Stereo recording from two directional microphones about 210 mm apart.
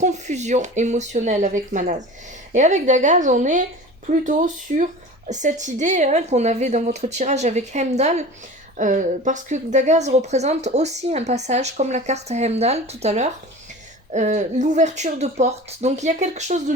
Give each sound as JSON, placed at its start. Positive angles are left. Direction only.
{"t": 0.0, "sound": "a woman's voice", "side_deg": -35}